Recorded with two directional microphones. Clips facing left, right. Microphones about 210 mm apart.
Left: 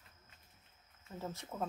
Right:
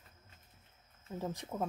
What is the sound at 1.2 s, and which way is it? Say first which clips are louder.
Speech: right 3 dB; 15° right (ahead or behind).